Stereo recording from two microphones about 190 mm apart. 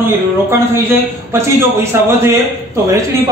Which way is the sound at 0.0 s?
10° right (ahead or behind).